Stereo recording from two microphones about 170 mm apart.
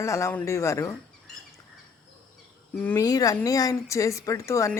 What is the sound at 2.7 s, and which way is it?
Speech, 15° left (ahead or behind).